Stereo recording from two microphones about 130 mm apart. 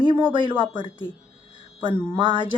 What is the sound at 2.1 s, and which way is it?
Speech, 40° right (ahead or behind).